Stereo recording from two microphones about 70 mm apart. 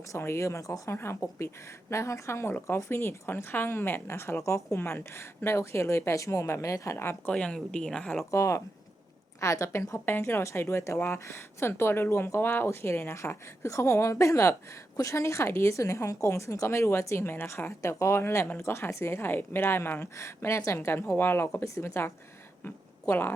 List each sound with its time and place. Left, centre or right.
0.2 s a woman's voice: left
4.8 s a woman's voice: left
5.4 s a woman's voice: left
7.3 s speech: centre
8.3 s a woman's voice: left
10.1 s a woman's voice: left
21.6 s a woman's voice: left
22.6 s a woman's voice: left